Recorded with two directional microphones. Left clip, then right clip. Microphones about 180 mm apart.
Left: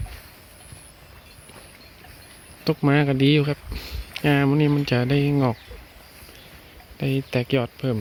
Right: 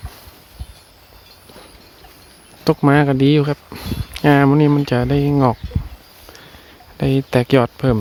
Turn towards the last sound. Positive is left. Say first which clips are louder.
# right 9 dB
turn(degrees=-20)  # may be behind; listen again after turning